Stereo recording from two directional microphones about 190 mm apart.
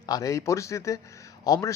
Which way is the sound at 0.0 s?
20° left (ahead or behind).